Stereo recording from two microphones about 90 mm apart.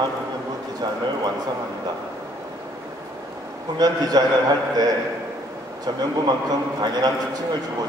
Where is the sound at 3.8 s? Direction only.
50° right (ahead or behind).